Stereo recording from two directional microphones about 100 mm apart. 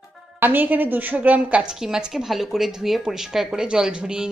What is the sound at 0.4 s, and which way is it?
A woman's voice, 20° right (ahead or behind).